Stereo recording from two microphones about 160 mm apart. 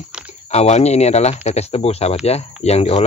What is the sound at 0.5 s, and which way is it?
Speech, 45° left (ahead or behind).